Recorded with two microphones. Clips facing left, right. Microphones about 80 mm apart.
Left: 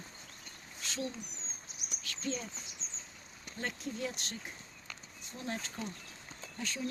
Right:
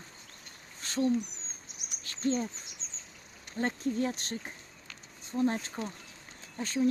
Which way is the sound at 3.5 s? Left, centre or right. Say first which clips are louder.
Right 9 dB; right.